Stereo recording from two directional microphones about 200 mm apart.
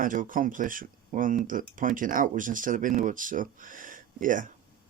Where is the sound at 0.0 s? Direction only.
40° right (ahead or behind).